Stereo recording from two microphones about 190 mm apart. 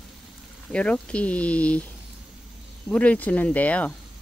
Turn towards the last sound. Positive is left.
turn(degrees=5)  # may be behind; listen again after turning